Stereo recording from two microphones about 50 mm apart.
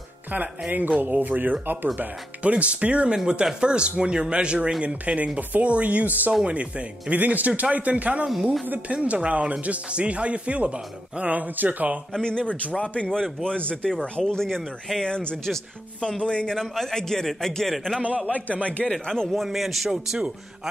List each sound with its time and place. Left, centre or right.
0.7 s speech: right
2.4 s speech: right
8.9 s speech: right
12.2 s a man's voice: centre
16.5 s a man's voice: centre
18.2 s a man's voice: left
18.9 s a man's voice: centre
19.3 s a man's voice: centre